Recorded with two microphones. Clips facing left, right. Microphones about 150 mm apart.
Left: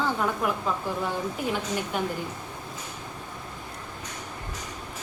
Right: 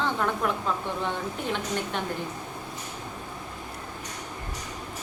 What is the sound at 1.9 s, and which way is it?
Speech, 5° left (ahead or behind).